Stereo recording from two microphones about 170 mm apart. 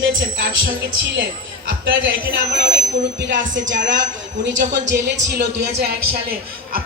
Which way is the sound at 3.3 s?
90° right.